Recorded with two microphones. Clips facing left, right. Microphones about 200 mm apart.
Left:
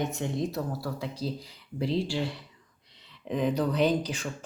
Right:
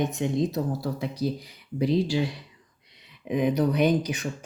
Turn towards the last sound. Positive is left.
turn(degrees=-15)  # may be behind; listen again after turning